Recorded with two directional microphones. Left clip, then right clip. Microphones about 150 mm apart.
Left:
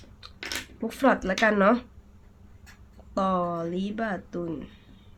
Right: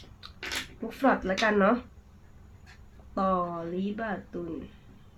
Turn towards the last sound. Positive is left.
turn(degrees=35)  # may be behind; listen again after turning